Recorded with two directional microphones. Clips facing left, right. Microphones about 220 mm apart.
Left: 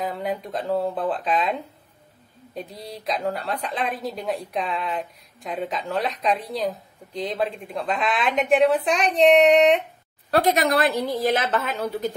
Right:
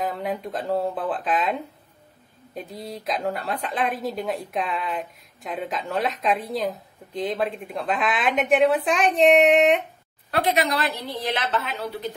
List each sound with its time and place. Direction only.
0.0 s a woman's voice: centre (ahead or behind)
10.3 s a woman's voice: 45° left (ahead or behind)